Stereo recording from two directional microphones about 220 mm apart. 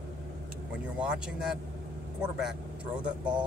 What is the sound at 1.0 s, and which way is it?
Speech, 5° right (ahead or behind).